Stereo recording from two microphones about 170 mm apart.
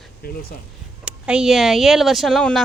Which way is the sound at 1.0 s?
5° right (ahead or behind).